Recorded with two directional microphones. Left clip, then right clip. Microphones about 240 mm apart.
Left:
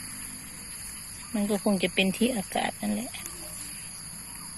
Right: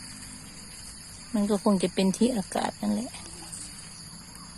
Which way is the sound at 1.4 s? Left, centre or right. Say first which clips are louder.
Right 1 dB; right.